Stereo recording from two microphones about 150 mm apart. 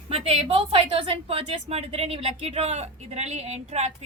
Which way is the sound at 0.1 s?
40° right (ahead or behind).